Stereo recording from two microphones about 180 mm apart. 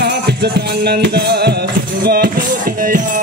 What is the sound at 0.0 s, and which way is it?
Music, 65° right (ahead or behind).